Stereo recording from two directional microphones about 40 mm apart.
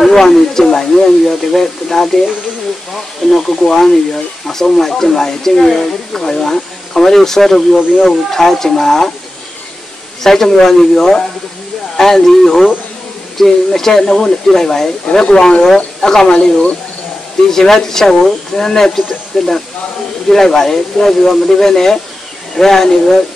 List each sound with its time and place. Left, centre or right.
0.0 s speech: centre
3.3 s speech: centre
10.2 s speech: centre
17.5 s speech: centre